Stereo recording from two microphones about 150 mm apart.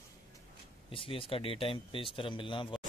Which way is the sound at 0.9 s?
35° left (ahead or behind).